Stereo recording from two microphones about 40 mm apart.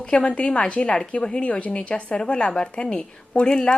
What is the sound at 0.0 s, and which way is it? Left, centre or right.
A woman's voice, left.